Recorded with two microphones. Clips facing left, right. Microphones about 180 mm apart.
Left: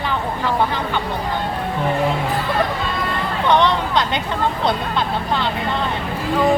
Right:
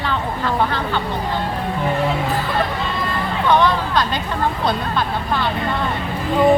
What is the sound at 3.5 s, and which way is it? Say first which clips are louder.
Speech: even; 20° left (ahead or behind).